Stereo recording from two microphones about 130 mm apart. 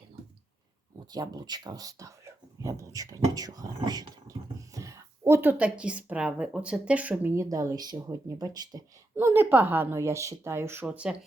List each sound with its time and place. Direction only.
1.1 s speech: 30° right (ahead or behind)
9.1 s a woman's voice: 15° right (ahead or behind)